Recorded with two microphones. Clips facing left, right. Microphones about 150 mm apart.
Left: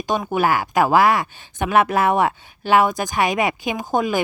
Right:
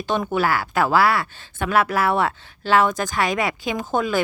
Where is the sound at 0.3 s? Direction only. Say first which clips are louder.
Left 2 dB; 15° left (ahead or behind).